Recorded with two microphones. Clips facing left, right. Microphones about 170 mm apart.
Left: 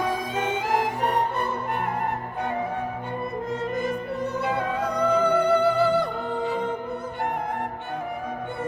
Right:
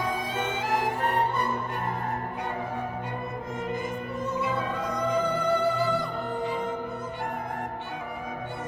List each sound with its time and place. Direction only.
3.8 s music: 70° left (ahead or behind)